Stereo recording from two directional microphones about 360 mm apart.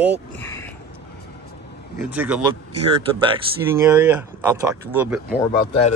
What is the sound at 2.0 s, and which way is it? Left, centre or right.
Speech, centre.